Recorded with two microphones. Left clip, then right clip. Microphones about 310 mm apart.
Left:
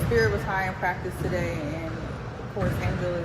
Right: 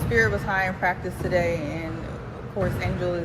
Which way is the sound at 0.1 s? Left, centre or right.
Right.